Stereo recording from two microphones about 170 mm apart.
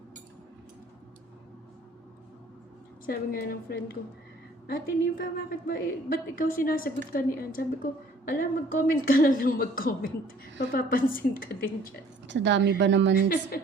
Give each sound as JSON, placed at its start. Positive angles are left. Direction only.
{"t": 3.1, "sound": "a woman's voice", "side_deg": 65}
{"t": 12.3, "sound": "a woman's voice", "side_deg": -90}
{"t": 13.2, "sound": "a woman's voice", "side_deg": 60}